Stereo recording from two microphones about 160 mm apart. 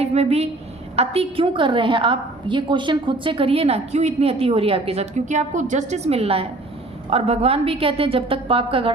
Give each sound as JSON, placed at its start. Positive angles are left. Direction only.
{"t": 0.0, "sound": "a woman's voice", "side_deg": -40}